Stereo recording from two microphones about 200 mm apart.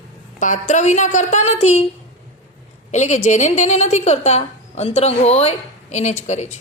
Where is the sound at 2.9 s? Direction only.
35° left (ahead or behind).